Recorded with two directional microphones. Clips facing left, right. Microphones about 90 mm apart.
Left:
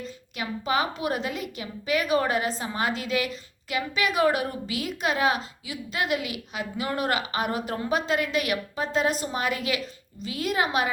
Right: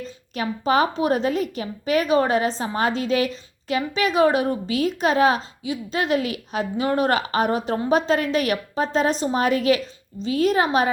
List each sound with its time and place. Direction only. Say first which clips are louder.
0.0 s a woman's voice: right 6 dB; 35° right (ahead or behind)